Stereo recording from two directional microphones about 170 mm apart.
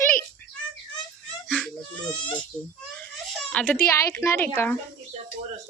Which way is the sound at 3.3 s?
5° left (ahead or behind).